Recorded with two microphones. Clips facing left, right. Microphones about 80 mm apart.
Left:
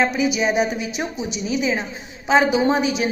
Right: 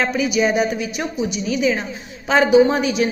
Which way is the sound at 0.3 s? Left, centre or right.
Left.